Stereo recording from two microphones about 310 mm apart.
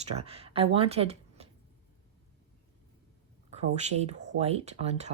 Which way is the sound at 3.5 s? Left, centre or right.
Right.